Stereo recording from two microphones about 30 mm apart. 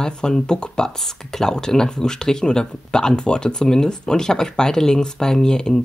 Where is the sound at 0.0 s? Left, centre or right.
Left.